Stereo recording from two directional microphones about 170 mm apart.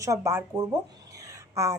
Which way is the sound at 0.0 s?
20° right (ahead or behind).